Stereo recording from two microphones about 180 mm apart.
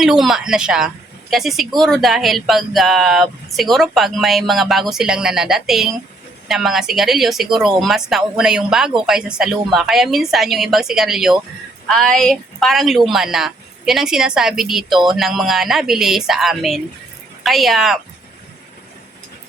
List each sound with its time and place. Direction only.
0.0 s speech: centre (ahead or behind)